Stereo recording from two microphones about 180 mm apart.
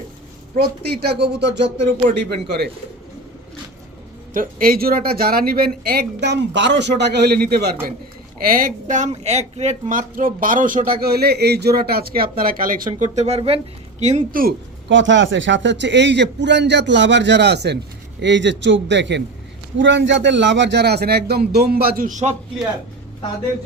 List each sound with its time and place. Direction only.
0.5 s speech: 60° right (ahead or behind)
4.4 s speech: 55° right (ahead or behind)
12.9 s speech: 35° right (ahead or behind); by 14.5 s 50° right (ahead or behind)
14.8 s a man's voice: 90° right; by 17.7 s 65° right (ahead or behind)
18.2 s a man's voice: 80° right; by 22.4 s 40° right (ahead or behind)